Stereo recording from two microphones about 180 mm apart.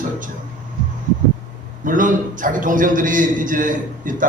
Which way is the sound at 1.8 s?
45° right (ahead or behind).